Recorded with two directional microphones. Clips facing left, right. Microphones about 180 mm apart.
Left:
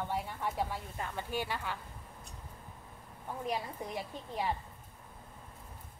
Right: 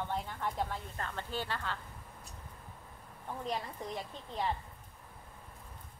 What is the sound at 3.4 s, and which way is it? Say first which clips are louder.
Speech: left 2 dB; 10° left (ahead or behind).